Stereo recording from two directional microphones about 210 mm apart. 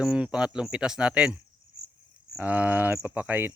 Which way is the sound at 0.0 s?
5° right (ahead or behind).